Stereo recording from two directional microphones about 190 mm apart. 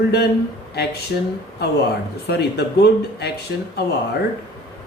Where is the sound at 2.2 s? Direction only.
60° left (ahead or behind).